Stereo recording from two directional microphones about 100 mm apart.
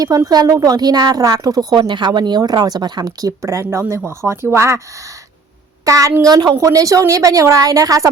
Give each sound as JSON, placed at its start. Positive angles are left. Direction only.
{"t": 0.3, "sound": "speech", "side_deg": -40}
{"t": 5.8, "sound": "speech", "side_deg": -35}